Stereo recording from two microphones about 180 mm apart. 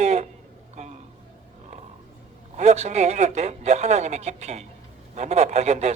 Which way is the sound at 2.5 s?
40° right (ahead or behind).